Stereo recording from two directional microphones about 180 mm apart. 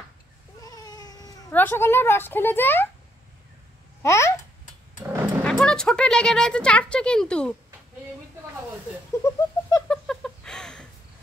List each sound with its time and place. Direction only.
0.6 s cat: 20° left (ahead or behind)
1.5 s speech: 10° left (ahead or behind)
4.0 s speech: 15° left (ahead or behind)
5.0 s music: 10° right (ahead or behind)
5.4 s speech: 5° left (ahead or behind)
9.2 s a sound: 15° left (ahead or behind)
9.8 s a sound: 5° left (ahead or behind)